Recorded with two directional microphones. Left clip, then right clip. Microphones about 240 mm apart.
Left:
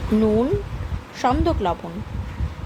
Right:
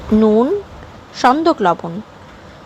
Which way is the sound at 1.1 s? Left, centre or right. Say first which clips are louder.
Right 8 dB; centre.